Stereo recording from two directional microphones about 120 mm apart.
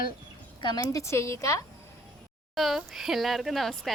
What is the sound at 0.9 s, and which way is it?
Speech, 25° left (ahead or behind).